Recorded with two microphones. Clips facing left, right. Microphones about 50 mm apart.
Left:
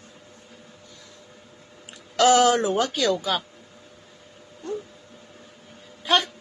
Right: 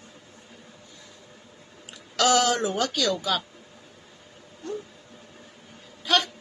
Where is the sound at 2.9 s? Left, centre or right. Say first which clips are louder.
Left 2 dB; left.